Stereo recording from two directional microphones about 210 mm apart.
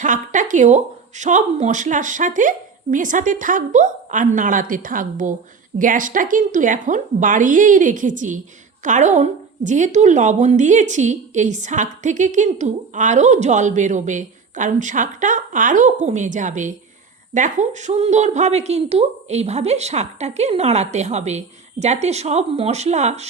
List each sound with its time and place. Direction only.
0.0 s a woman's voice: 35° right (ahead or behind)